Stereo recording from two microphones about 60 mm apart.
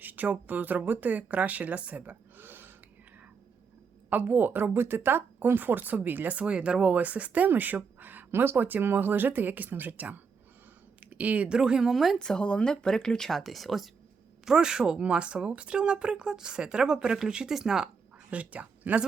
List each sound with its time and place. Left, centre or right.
0.0 s speech: right
4.1 s a woman's voice: right; by 11.9 s centre
11.9 s a woman's voice: centre
12.2 s speech: centre
14.4 s speech: centre
18.3 s speech: right